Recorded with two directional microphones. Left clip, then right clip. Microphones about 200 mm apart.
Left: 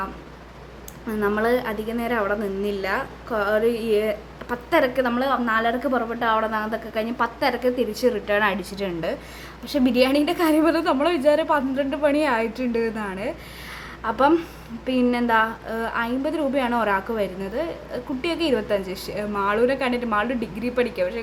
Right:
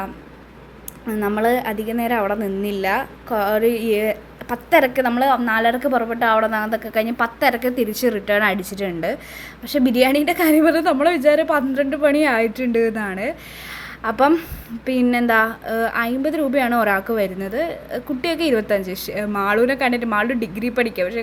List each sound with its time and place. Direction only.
1.0 s a woman's voice: 10° right (ahead or behind)